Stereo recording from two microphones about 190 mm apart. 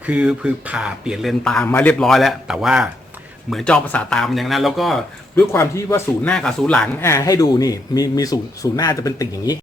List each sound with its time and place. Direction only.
0.0 s a man's voice: 5° right (ahead or behind)
5.5 s speech: 15° left (ahead or behind)